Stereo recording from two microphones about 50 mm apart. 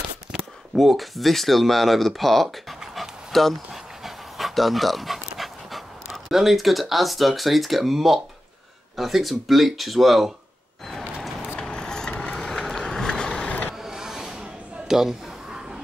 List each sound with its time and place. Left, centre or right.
0.3 s speech: centre
3.0 s dog: centre
8.9 s speech: centre
10.9 s a sound: centre
11.6 s vehicle: centre
13.7 s vehicle: centre
14.9 s a sound: centre